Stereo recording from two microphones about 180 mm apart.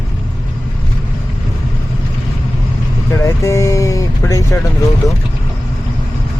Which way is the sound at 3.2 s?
15° left (ahead or behind).